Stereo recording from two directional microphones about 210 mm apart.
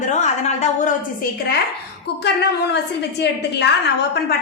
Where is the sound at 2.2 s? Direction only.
55° left (ahead or behind).